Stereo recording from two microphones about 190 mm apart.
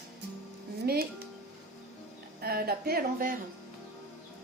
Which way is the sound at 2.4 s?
55° right (ahead or behind).